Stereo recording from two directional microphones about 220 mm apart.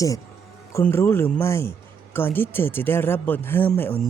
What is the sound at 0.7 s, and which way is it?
Speech, 10° left (ahead or behind).